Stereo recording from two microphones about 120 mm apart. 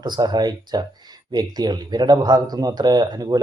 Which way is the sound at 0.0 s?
35° right (ahead or behind).